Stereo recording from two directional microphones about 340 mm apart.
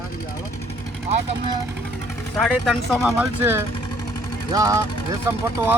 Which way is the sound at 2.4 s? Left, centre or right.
Centre.